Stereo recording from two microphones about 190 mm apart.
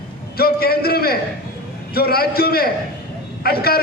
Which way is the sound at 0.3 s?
55° left (ahead or behind).